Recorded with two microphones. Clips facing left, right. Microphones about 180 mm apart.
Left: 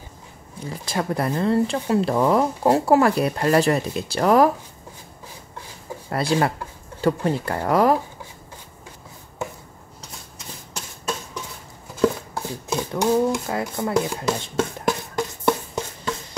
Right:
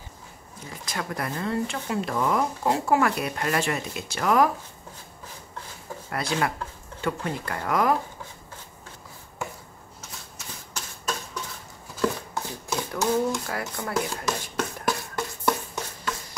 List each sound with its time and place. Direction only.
0.7 s speech: 30° left (ahead or behind)
6.0 s speech: 30° left (ahead or behind)
12.0 s chopping: 20° left (ahead or behind)